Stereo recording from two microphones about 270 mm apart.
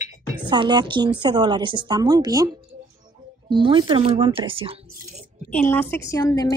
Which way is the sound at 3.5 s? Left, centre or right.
Centre.